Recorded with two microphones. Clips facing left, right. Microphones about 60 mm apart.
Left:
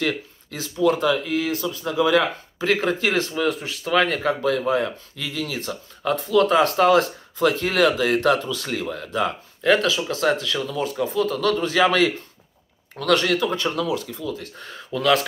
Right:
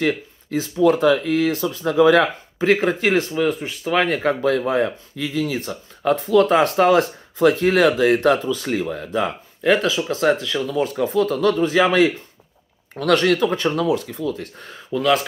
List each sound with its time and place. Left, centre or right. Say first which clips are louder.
0.0 s speech: right 4 dB; right
1.0 s speech: right 5 dB; right
2.6 s speech: right 4 dB; right
11.1 s speech: right 4 dB; right
11.6 s speech: right 2 dB; centre
13.0 s speech: right 3 dB; right
14.7 s speech: right 1 dB; centre